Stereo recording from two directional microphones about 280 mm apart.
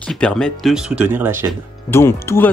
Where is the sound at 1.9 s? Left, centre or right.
Centre.